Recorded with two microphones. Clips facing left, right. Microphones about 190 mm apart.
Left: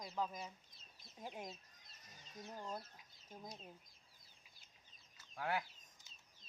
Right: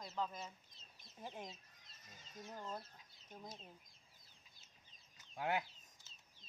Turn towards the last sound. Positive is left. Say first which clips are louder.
# right 1 dB
turn(degrees=-20)  # may be behind; listen again after turning